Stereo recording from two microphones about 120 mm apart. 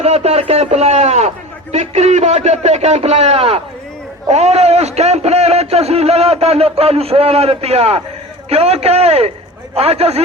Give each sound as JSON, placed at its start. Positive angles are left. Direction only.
{"t": 0.0, "sound": "a man's voice", "side_deg": -60}
{"t": 4.3, "sound": "a man's voice", "side_deg": -65}